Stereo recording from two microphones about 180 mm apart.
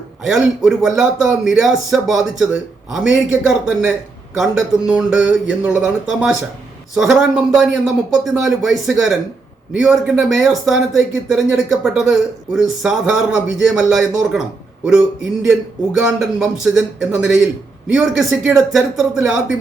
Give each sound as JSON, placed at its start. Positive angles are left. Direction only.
{"t": 0.2, "sound": "speech", "side_deg": 0}
{"t": 15.4, "sound": "speech", "side_deg": -5}